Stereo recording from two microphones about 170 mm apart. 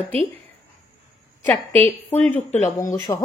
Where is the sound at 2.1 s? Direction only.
10° left (ahead or behind).